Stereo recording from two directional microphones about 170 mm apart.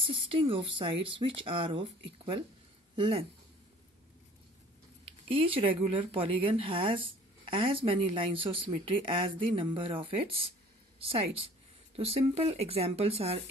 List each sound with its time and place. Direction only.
0.0 s speech: 30° right (ahead or behind)
3.0 s speech: 35° right (ahead or behind)
5.3 s speech: 30° right (ahead or behind)